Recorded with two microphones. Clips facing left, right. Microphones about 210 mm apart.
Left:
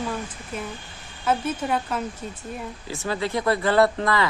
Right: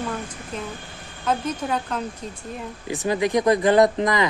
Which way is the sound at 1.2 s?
5° left (ahead or behind).